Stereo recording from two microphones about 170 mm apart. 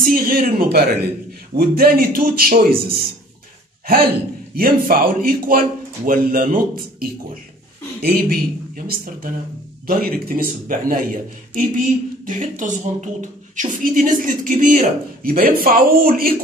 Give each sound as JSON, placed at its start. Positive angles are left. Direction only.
{"t": 0.0, "sound": "a man's voice", "side_deg": -60}
{"t": 12.3, "sound": "a woman's voice", "side_deg": -50}